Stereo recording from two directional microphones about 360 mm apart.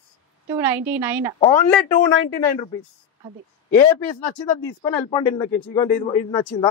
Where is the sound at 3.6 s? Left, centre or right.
Centre.